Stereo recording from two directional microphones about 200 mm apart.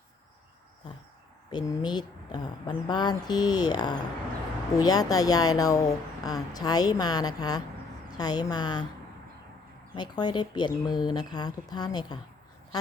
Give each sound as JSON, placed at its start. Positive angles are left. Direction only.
{"t": 1.5, "sound": "speech", "side_deg": 20}
{"t": 9.9, "sound": "speech", "side_deg": 20}